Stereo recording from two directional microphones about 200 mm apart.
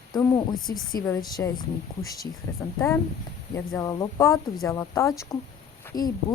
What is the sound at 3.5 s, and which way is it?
Speech, 15° left (ahead or behind).